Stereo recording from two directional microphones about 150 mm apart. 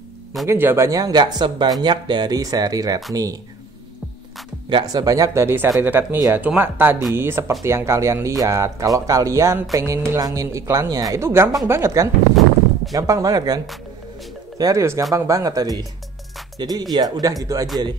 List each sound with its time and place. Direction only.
0.5 s speech: 15° right (ahead or behind)
4.6 s speech: 30° right (ahead or behind)
14.6 s speech: 20° right (ahead or behind)